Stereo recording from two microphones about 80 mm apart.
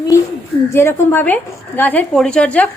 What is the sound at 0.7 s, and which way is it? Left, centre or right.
A woman's voice, left.